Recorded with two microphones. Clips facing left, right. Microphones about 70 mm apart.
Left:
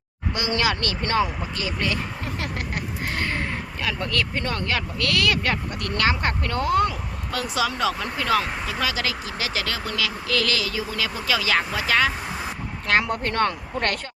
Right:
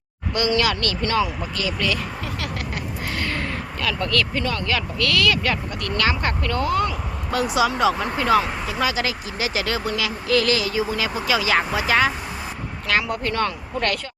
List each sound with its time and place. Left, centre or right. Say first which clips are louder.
0.3 s speech: right 3 dB; left
3.2 s a sound: right 1 dB; left
4.4 s speech: right 2 dB; left
7.3 s speech: right 5 dB; centre
12.9 s speech: left 1 dB; left